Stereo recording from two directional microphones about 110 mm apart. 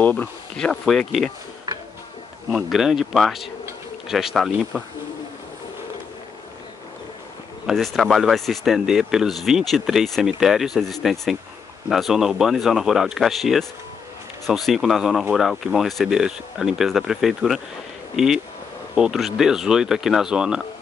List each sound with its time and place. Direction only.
0.0 s speech: 15° left (ahead or behind)
1.7 s a sound: 35° right (ahead or behind)
2.5 s speech: 5° right (ahead or behind)
7.6 s speech: centre (ahead or behind)